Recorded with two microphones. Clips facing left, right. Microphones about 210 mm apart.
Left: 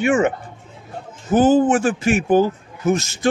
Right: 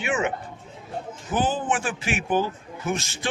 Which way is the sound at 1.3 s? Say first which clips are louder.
Left 11 dB; 45° left (ahead or behind).